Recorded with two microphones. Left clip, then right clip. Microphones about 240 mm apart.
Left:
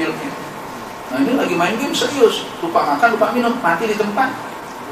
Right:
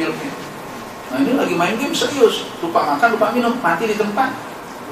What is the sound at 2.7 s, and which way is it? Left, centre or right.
Speech, centre.